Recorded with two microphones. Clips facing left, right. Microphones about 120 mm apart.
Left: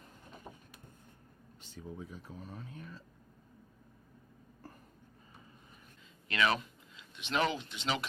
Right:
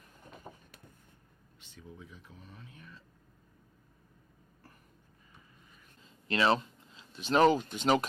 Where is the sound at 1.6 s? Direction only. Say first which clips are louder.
Left 5 dB; 40° left (ahead or behind).